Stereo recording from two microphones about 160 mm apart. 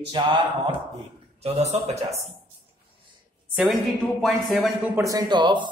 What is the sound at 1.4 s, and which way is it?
Speech, 45° right (ahead or behind).